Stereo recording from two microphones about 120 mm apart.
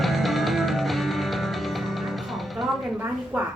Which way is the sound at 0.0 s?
Centre (ahead or behind).